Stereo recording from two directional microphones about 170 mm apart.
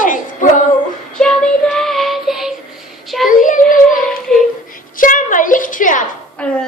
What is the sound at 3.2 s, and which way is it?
Speech, 50° left (ahead or behind).